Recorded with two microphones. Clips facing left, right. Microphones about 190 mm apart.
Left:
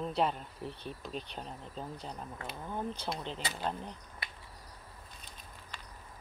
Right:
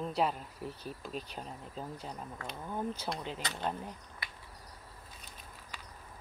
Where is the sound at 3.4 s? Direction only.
5° left (ahead or behind).